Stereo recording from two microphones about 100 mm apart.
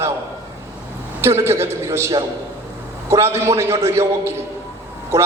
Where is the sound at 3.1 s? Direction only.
30° right (ahead or behind).